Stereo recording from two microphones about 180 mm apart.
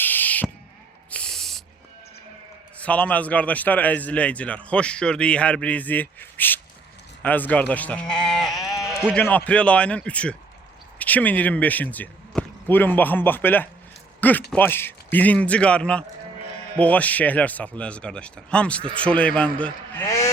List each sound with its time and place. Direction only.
0.0 s owl: 10° left (ahead or behind)
1.1 s snort: 5° left (ahead or behind)
2.7 s a man's voice: 5° left (ahead or behind)
20.1 s a sound: 15° left (ahead or behind)